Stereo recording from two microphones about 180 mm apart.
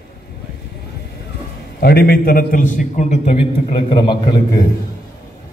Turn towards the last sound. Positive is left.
turn(degrees=25)  # may be behind; listen again after turning